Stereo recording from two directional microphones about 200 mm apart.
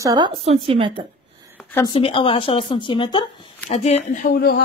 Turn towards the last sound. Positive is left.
turn(degrees=50)  # may be behind; listen again after turning